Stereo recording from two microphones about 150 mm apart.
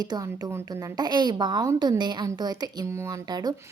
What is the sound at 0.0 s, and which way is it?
A woman's voice, 25° right (ahead or behind).